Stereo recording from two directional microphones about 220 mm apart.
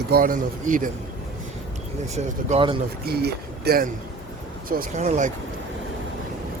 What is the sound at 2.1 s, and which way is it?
Speech, 25° right (ahead or behind).